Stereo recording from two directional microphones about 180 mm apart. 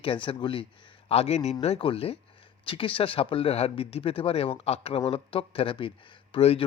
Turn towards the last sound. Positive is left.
turn(degrees=30)  # may be behind; listen again after turning